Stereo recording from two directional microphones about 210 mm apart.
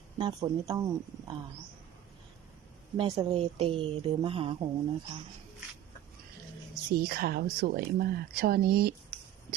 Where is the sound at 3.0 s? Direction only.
25° right (ahead or behind).